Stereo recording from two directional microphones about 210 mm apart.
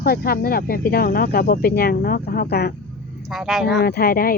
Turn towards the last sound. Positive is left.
turn(degrees=45)  # may be behind; listen again after turning